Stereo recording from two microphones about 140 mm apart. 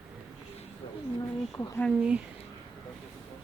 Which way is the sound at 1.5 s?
20° left (ahead or behind).